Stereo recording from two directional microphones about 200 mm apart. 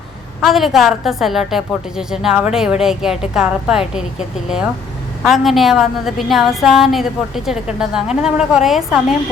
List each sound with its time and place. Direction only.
0.4 s a woman's voice: centre (ahead or behind)